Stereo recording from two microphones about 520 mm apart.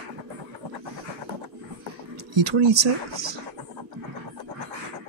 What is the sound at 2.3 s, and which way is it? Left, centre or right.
Speech, right.